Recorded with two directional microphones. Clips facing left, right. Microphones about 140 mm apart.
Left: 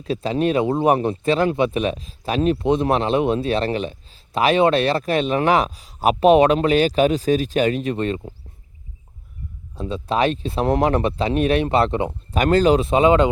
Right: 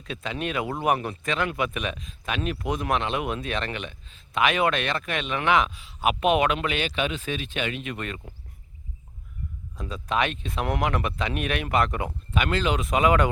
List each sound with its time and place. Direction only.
0.0 s speech: 35° left (ahead or behind)
9.7 s speech: 30° left (ahead or behind)
12.3 s speech: 40° left (ahead or behind)